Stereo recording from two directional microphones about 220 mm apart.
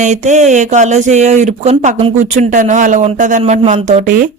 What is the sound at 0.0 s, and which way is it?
Speech, 35° right (ahead or behind).